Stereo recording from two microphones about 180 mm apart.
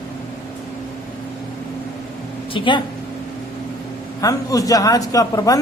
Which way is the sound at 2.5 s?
30° left (ahead or behind).